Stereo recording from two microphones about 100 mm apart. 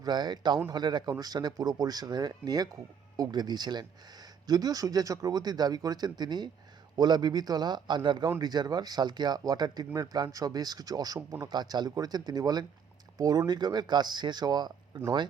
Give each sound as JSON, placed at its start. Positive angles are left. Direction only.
{"t": 0.0, "sound": "speech", "side_deg": -45}